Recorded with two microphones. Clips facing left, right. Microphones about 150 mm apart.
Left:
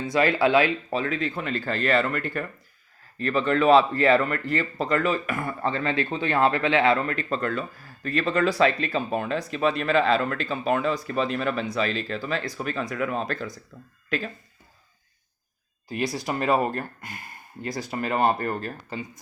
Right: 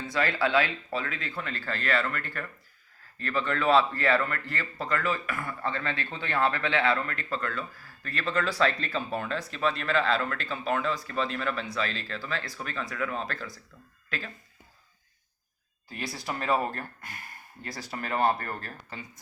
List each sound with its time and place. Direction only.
0.0 s speech: 15° left (ahead or behind)
16.1 s speech: 15° left (ahead or behind)